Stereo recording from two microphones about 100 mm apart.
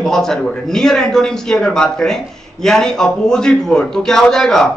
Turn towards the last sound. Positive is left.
turn(degrees=5)  # may be behind; listen again after turning